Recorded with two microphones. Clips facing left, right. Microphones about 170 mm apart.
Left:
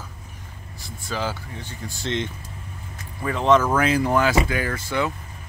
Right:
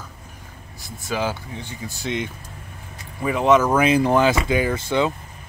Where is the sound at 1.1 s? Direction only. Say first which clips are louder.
Right 3 dB; 15° right (ahead or behind).